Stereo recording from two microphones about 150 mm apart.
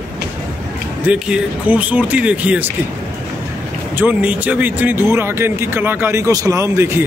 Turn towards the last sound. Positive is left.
turn(degrees=-20)  # may be behind; listen again after turning